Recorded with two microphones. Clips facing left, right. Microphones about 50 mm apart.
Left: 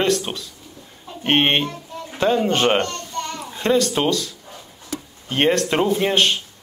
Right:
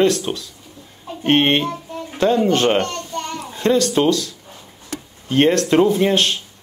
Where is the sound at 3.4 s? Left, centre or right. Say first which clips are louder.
Right 2 dB; centre.